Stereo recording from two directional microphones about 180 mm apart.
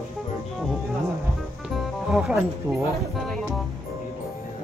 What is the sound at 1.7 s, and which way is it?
Music, centre (ahead or behind).